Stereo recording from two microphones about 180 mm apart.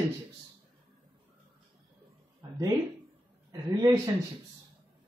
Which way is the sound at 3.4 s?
20° right (ahead or behind).